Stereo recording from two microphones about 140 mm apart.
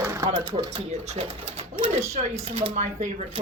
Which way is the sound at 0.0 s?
20° right (ahead or behind).